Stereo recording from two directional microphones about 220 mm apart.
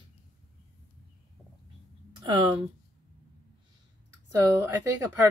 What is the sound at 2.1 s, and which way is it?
Speech, 20° right (ahead or behind).